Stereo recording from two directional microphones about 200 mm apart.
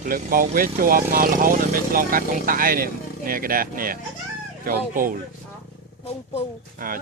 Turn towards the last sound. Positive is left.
turn(degrees=-45)  # may be behind; listen again after turning